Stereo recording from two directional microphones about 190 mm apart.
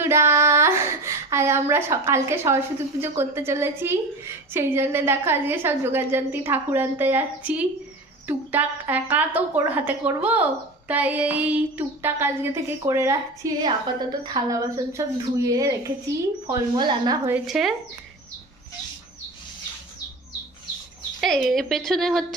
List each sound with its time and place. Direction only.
0.0 s a woman's voice: 15° right (ahead or behind)
17.3 s a woman's voice: centre (ahead or behind)
21.2 s a woman's voice: centre (ahead or behind)